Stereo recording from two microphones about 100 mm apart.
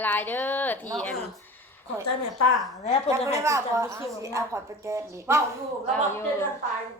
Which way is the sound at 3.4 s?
30° right (ahead or behind).